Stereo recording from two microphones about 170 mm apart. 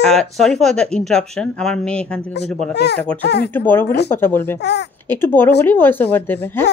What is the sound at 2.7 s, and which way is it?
Speech, 75° left (ahead or behind).